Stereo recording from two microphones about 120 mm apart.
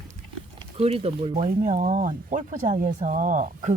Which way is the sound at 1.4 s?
90° right.